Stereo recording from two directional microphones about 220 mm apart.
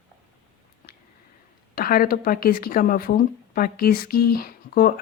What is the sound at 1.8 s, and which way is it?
Speech, 40° left (ahead or behind).